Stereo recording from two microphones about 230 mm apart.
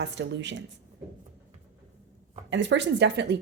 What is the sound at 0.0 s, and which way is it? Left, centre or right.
Speech, right.